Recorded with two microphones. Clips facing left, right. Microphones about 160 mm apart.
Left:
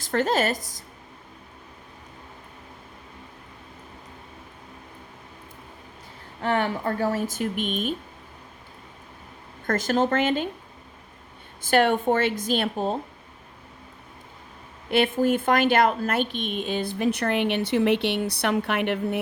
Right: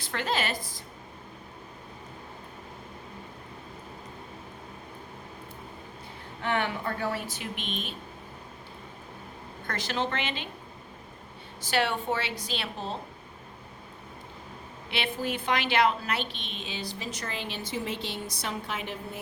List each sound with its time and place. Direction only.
0.0 s a woman's voice: 45° left (ahead or behind)
6.4 s a woman's voice: 40° left (ahead or behind)
9.6 s a woman's voice: 45° left (ahead or behind)
11.6 s a woman's voice: 50° left (ahead or behind)
14.8 s a woman's voice: 50° left (ahead or behind); by 19.2 s 65° left (ahead or behind)